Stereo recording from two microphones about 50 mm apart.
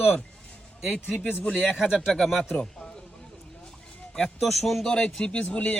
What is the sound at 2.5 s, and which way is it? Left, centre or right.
Speech, centre.